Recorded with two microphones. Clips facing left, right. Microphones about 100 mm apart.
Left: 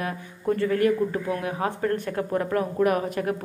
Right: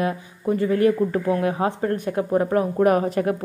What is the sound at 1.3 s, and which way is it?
Speech, 30° right (ahead or behind).